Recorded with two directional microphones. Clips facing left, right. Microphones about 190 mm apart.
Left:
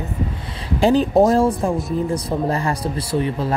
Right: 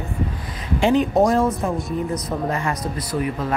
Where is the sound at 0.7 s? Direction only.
35° left (ahead or behind).